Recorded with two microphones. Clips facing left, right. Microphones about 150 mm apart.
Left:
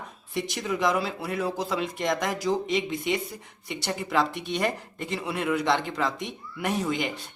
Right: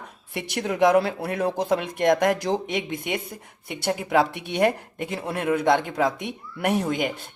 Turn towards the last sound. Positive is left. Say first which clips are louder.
# right 4 dB
turn(degrees=-55)  # may be behind; listen again after turning